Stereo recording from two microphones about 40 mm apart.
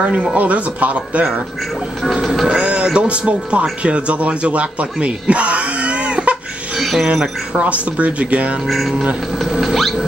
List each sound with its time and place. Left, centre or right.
0.1 s speech: right
0.4 s speech: right
2.4 s speech: right
6.8 s a sound: centre
7.5 s speech: right
8.6 s speech: centre
9.5 s rodents: centre